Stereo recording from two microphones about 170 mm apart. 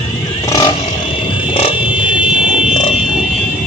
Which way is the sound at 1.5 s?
35° left (ahead or behind).